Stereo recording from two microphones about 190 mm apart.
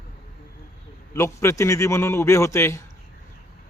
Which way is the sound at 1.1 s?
15° left (ahead or behind).